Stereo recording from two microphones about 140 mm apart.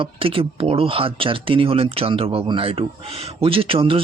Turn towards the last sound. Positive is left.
turn(degrees=-40)  # may be behind; listen again after turning